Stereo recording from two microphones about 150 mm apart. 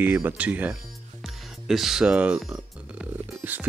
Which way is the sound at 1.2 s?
Centre (ahead or behind).